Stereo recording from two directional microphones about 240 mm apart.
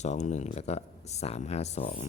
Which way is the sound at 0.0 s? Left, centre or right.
Left.